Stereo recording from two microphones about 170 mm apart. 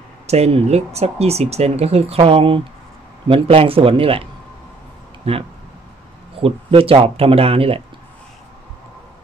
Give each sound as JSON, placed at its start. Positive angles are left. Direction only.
{"t": 0.3, "sound": "speech", "side_deg": -35}
{"t": 5.2, "sound": "speech", "side_deg": -35}
{"t": 6.4, "sound": "speech", "side_deg": -35}